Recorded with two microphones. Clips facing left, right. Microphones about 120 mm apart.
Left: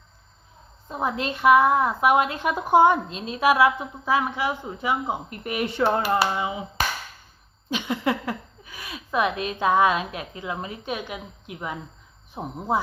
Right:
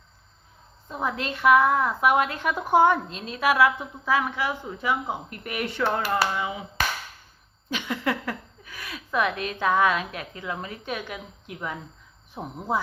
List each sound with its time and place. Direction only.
0.9 s a woman's voice: 20° left (ahead or behind)